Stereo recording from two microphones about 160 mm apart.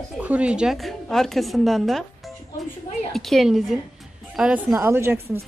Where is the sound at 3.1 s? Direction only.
Centre (ahead or behind); by 5.4 s 15° right (ahead or behind).